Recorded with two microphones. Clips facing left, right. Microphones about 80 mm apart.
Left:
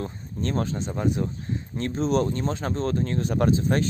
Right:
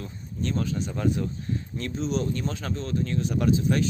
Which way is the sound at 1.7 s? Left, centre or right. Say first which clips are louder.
Left 6 dB; left.